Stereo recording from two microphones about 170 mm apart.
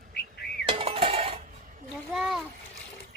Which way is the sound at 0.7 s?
35° right (ahead or behind).